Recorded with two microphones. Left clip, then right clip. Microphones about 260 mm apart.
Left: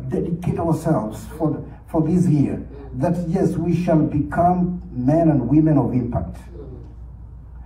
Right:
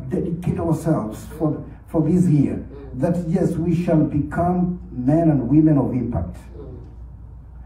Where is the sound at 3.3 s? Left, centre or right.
Left.